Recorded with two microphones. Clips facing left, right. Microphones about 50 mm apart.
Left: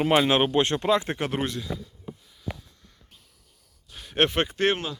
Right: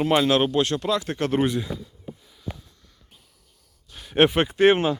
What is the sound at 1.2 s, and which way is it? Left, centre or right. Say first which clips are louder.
Speech: right 5 dB; centre.